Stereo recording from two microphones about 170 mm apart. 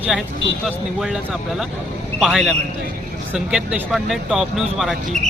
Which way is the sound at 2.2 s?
Centre (ahead or behind).